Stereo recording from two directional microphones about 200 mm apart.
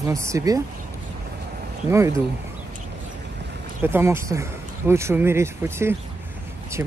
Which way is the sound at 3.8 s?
10° right (ahead or behind).